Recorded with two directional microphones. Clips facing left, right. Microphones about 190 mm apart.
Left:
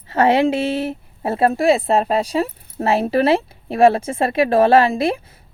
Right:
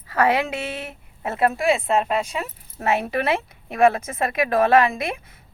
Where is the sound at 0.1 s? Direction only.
25° left (ahead or behind).